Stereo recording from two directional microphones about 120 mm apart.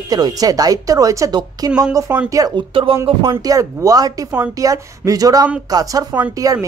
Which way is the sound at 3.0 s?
45° right (ahead or behind).